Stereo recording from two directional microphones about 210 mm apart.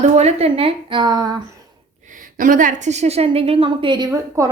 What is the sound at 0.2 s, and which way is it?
A woman's voice, 30° right (ahead or behind).